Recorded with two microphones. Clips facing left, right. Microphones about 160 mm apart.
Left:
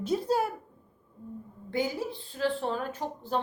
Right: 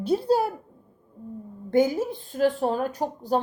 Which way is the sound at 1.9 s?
45° right (ahead or behind).